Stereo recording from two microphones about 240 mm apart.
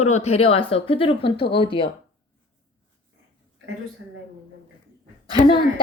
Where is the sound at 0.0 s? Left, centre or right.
Left.